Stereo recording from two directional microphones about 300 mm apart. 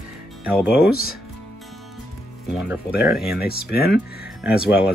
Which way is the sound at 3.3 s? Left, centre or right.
Left.